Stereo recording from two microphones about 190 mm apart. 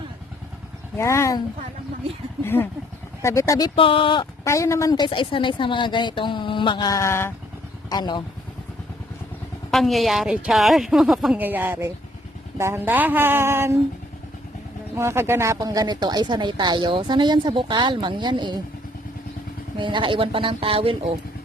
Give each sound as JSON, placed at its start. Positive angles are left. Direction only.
{"t": 0.9, "sound": "speech", "side_deg": 15}
{"t": 2.4, "sound": "speech", "side_deg": 10}
{"t": 3.8, "sound": "speech", "side_deg": 30}
{"t": 9.7, "sound": "a woman's voice", "side_deg": 0}
{"t": 14.9, "sound": "a woman's voice", "side_deg": -15}
{"t": 19.8, "sound": "a woman's voice", "side_deg": -25}